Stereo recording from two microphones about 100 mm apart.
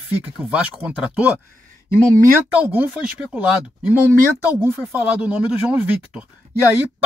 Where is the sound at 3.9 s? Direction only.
20° right (ahead or behind).